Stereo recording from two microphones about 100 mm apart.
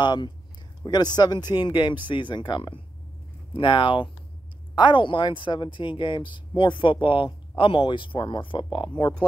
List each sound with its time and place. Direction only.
0.0 s speech: 50° left (ahead or behind)